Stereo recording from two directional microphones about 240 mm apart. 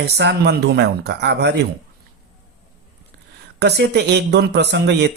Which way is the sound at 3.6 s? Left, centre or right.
Right.